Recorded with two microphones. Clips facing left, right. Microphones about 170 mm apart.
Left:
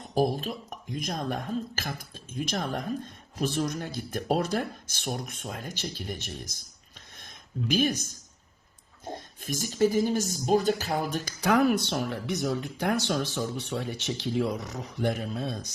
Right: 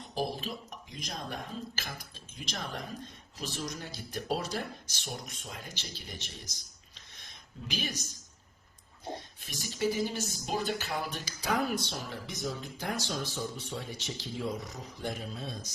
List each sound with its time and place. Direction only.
0.1 s speech: 50° left (ahead or behind)
7.2 s a sound: 50° left (ahead or behind)
9.1 s speech: 45° left (ahead or behind)
11.3 s speech: 65° left (ahead or behind)